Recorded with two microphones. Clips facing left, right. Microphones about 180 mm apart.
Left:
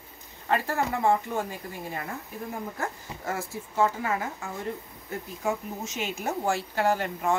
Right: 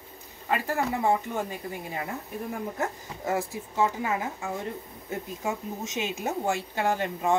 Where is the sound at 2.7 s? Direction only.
20° right (ahead or behind).